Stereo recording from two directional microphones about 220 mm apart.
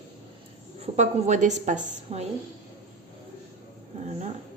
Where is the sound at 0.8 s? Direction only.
30° right (ahead or behind).